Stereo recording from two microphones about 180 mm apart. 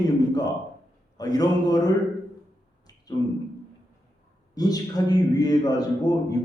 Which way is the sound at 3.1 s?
20° left (ahead or behind).